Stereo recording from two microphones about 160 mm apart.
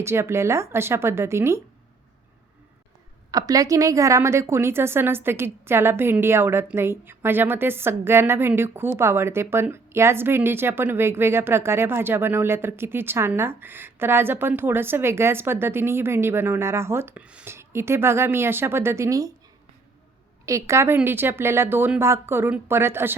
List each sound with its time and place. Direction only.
0.0 s a woman's voice: 15° right (ahead or behind)
3.3 s a woman's voice: 20° right (ahead or behind)
20.4 s a woman's voice: 20° right (ahead or behind)